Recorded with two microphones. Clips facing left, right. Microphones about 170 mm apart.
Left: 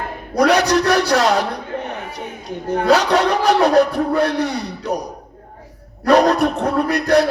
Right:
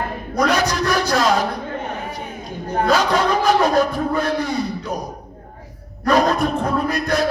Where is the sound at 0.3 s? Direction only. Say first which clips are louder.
Left 4 dB; 70° left (ahead or behind).